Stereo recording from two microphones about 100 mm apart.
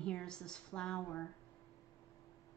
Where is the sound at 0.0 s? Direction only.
10° left (ahead or behind).